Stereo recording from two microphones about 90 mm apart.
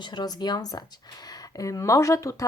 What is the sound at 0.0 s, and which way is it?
Speech, 55° left (ahead or behind).